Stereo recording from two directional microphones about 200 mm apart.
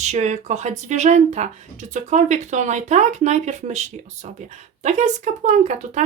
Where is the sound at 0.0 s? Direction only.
35° right (ahead or behind).